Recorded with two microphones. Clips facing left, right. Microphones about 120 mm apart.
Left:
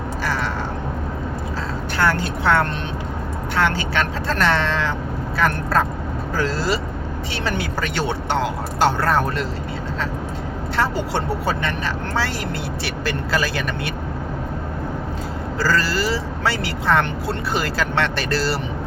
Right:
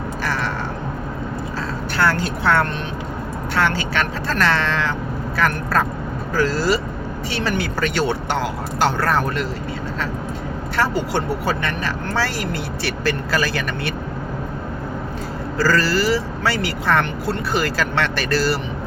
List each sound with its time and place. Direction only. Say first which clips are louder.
2.0 s speech: right 1 dB; 20° left (ahead or behind)
10.8 s speech: right 1 dB; 25° left (ahead or behind)
15.6 s speech: right 3 dB; 20° left (ahead or behind)